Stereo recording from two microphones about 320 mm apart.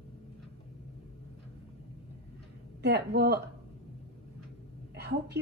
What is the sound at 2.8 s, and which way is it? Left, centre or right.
Speech, right.